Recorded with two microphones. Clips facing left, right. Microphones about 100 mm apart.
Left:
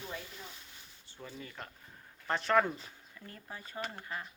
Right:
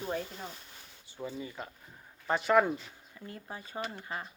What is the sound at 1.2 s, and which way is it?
Speech, 10° right (ahead or behind).